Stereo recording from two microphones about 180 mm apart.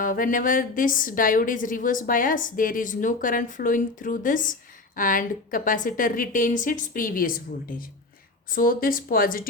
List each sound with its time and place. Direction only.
0.0 s a woman's voice: 50° left (ahead or behind)